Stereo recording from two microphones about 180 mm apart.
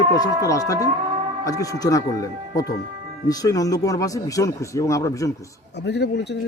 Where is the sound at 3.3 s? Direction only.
20° left (ahead or behind).